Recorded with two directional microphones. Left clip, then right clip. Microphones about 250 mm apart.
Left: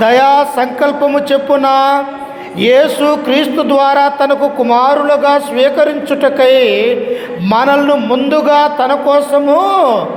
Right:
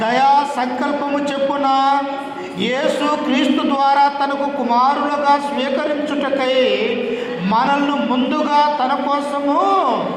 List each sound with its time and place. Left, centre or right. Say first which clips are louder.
0.0 s speech: left 6 dB; left